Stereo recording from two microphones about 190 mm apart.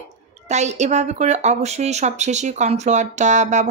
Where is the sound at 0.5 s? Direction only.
35° right (ahead or behind).